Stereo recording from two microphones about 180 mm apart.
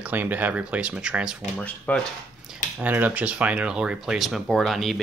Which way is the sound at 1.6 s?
5° left (ahead or behind).